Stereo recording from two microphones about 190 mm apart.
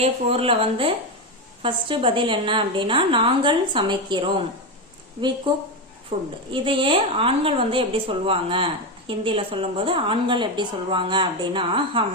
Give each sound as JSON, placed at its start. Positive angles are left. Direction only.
{"t": 0.0, "sound": "a woman's voice", "side_deg": -30}
{"t": 6.1, "sound": "a woman's voice", "side_deg": -30}